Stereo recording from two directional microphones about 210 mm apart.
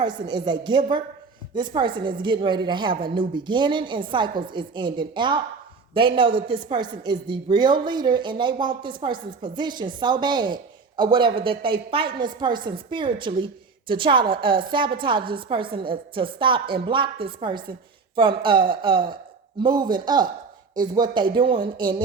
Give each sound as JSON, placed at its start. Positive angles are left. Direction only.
{"t": 0.0, "sound": "speech", "side_deg": -20}